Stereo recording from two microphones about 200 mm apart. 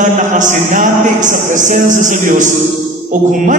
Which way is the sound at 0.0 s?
40° right (ahead or behind).